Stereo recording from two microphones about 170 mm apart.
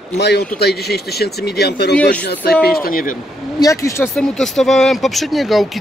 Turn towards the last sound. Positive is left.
turn(degrees=0)  # may be behind; listen again after turning